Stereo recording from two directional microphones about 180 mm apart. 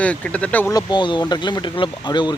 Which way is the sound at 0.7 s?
25° left (ahead or behind).